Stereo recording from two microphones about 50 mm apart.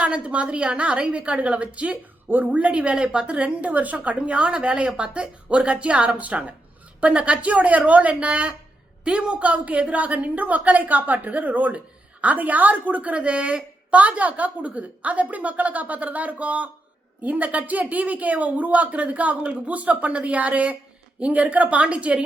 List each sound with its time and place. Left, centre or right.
0.0 s a woman's voice: right